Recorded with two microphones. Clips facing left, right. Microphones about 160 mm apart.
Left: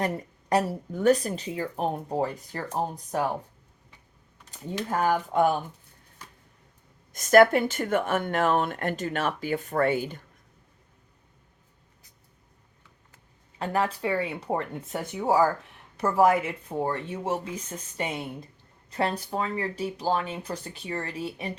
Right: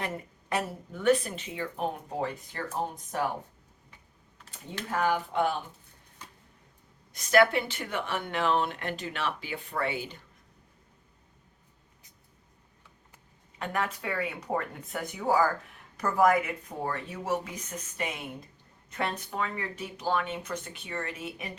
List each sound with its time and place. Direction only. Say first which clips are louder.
0.5 s speech: left 7 dB; 40° left (ahead or behind)
4.9 s speech: left 2 dB; 40° left (ahead or behind)
7.1 s speech: left 5 dB; 45° left (ahead or behind)
13.6 s speech: left 5 dB; 30° left (ahead or behind)